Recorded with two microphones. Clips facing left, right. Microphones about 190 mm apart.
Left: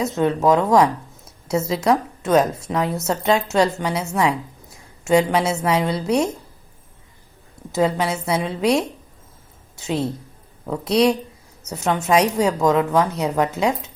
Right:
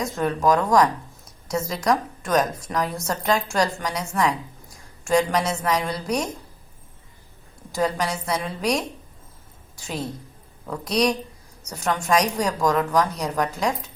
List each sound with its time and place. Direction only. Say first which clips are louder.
0.0 s speech: left 4 dB; 25° left (ahead or behind)
4.2 s a sound: left 1 dB; 25° left (ahead or behind)
5.5 s speech: left 4 dB; 25° left (ahead or behind)
7.7 s a woman's voice: left 4 dB; 25° left (ahead or behind)